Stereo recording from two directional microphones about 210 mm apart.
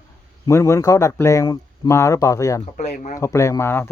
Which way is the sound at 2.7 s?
35° left (ahead or behind).